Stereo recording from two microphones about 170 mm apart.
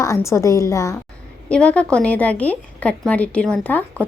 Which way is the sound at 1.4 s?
5° left (ahead or behind).